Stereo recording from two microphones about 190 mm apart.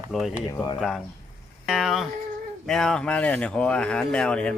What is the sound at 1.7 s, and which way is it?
Speech, centre (ahead or behind).